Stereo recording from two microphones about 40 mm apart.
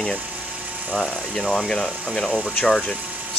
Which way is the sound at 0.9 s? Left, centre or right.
Centre.